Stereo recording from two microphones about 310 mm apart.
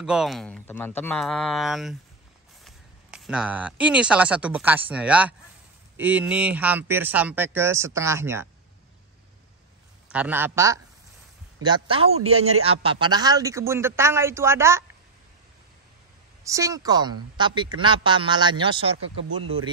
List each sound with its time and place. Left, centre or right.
0.0 s speech: centre
10.0 s speech: centre
16.4 s speech: centre